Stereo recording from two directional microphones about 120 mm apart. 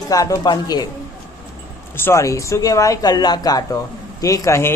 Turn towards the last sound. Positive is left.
turn(degrees=25)  # may be behind; listen again after turning